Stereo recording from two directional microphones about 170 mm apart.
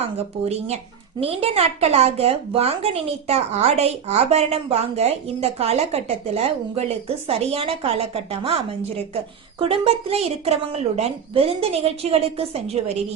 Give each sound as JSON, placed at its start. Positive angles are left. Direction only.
{"t": 0.0, "sound": "a woman's voice", "side_deg": -40}